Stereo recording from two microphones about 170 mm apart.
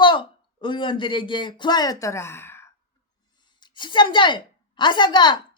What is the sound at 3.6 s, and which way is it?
A woman's voice, 30° left (ahead or behind).